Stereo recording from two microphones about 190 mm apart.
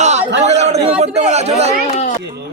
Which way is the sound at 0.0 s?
35° right (ahead or behind).